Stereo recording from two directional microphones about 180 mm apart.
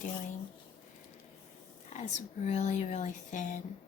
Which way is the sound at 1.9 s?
40° left (ahead or behind).